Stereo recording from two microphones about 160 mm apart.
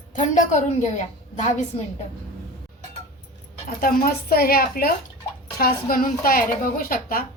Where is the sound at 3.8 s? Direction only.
65° left (ahead or behind).